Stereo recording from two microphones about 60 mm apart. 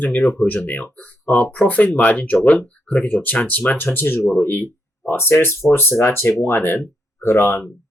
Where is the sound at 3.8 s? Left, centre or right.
Left.